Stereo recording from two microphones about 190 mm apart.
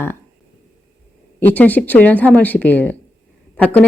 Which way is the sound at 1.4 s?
10° left (ahead or behind).